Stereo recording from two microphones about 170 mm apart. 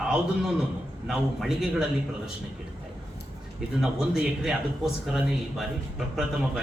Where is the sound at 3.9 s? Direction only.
5° right (ahead or behind).